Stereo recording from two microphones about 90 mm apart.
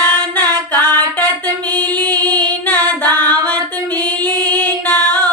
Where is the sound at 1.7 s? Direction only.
15° left (ahead or behind).